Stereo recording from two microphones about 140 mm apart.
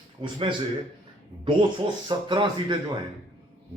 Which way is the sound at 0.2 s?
35° right (ahead or behind).